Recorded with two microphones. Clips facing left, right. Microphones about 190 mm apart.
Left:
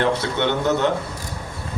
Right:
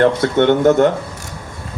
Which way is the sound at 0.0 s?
50° right (ahead or behind).